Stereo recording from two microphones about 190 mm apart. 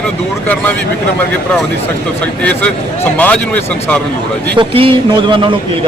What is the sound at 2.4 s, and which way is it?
Speech, 10° left (ahead or behind).